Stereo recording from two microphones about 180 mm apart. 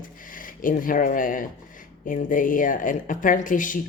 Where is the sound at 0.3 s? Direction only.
50° left (ahead or behind).